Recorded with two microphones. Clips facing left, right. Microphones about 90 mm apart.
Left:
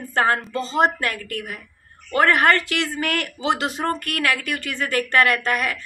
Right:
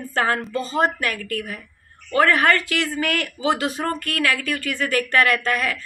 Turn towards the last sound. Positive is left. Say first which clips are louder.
# even
turn(degrees=20)  # may be behind; listen again after turning